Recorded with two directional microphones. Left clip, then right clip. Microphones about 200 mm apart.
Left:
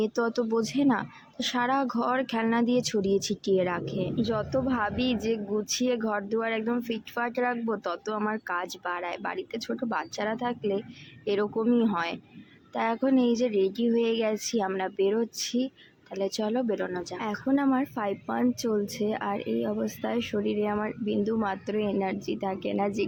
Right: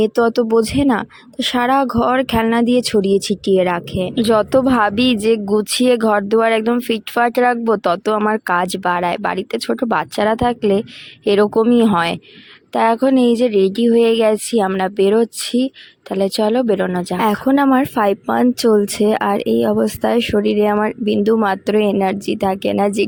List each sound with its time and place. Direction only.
0.0 s a woman's voice: 45° right (ahead or behind)